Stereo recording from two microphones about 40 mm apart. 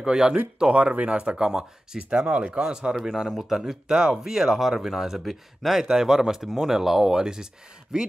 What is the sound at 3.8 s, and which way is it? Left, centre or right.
Speech, right.